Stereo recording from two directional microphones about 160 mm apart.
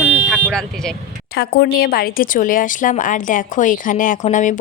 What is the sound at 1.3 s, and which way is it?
Speech, 85° left.